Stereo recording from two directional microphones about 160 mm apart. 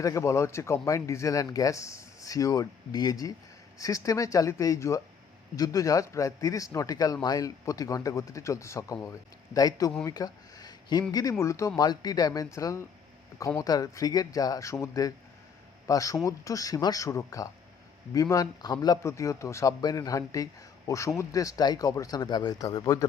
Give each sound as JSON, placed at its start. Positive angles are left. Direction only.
{"t": 0.0, "sound": "a man's voice", "side_deg": 20}
{"t": 10.0, "sound": "a sound", "side_deg": 20}
{"t": 11.1, "sound": "a man's voice", "side_deg": 20}